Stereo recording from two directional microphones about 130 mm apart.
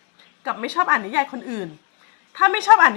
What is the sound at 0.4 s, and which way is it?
A woman's voice, 15° right (ahead or behind).